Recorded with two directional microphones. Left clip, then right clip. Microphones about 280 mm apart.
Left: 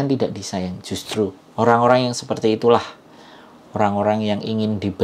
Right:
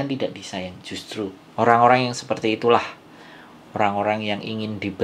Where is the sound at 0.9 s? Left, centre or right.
Left.